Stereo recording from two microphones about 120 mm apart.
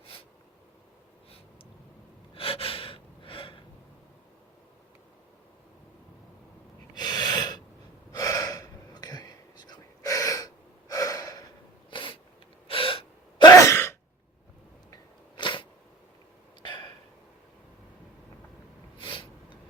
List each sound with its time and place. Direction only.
2.3 s gasp: 50° left (ahead or behind)
6.9 s gasp: 35° left (ahead or behind)
11.9 s a sound: 45° left (ahead or behind)
12.6 s gasp: 50° left (ahead or behind)
13.6 s sigh: 25° left (ahead or behind)
15.4 s a sound: 40° left (ahead or behind)
16.6 s hiccup: 40° left (ahead or behind)
18.9 s snort: 45° left (ahead or behind)